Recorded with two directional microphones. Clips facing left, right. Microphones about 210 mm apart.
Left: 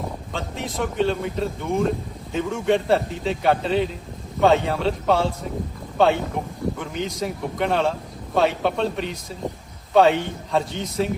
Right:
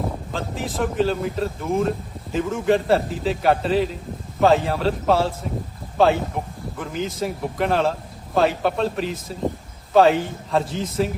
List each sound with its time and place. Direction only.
0.0 s a man's voice: centre (ahead or behind)